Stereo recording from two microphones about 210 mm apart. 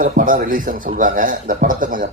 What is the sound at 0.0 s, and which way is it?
Speech, 40° right (ahead or behind).